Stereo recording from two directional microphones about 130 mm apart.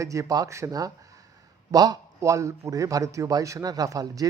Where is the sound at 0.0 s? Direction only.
25° right (ahead or behind).